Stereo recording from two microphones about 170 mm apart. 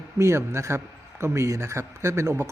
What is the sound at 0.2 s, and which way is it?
Speech, 15° right (ahead or behind).